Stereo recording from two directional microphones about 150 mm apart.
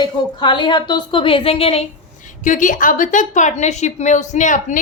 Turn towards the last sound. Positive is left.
turn(degrees=55)  # may be behind; listen again after turning